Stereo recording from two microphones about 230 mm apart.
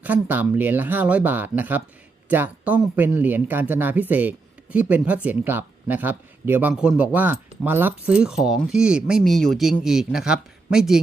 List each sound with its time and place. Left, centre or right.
0.0 s speech: centre